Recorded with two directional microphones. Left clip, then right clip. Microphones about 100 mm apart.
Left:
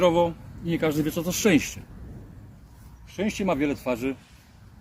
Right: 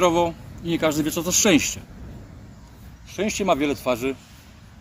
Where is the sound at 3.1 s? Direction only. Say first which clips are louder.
Right 5 dB; 25° left (ahead or behind).